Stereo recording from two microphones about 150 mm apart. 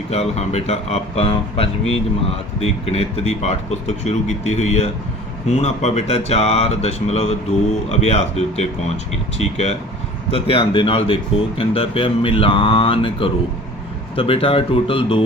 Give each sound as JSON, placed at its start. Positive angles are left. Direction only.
{"t": 0.1, "sound": "speech", "side_deg": 45}